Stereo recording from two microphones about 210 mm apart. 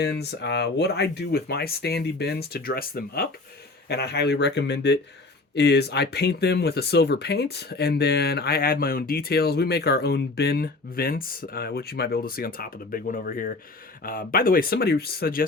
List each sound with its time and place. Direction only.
0.0 s speech: 50° left (ahead or behind)